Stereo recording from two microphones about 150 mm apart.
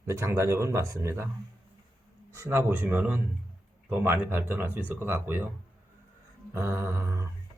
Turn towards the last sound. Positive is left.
turn(degrees=-20)  # may be behind; listen again after turning